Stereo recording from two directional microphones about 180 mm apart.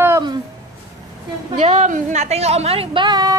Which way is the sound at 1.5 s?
40° right (ahead or behind).